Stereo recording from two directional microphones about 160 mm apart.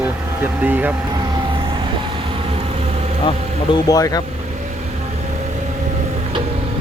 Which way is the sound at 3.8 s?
25° left (ahead or behind).